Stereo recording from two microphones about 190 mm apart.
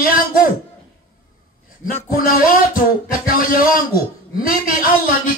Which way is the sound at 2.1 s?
50° left (ahead or behind).